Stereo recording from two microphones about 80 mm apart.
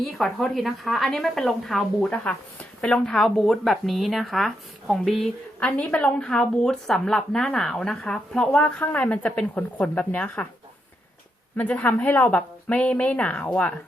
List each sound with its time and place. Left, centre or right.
0.0 s speech: centre
2.0 s speech: centre
5.5 s a woman's voice: centre
11.7 s a woman's voice: centre